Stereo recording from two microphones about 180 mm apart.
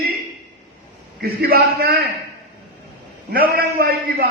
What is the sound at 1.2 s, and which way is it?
Speech, 60° right (ahead or behind).